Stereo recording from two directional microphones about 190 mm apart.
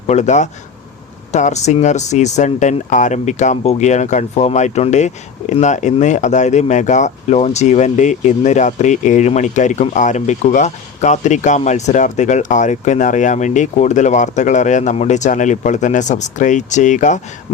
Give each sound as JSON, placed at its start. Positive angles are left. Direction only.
{"t": 0.1, "sound": "speech", "side_deg": 35}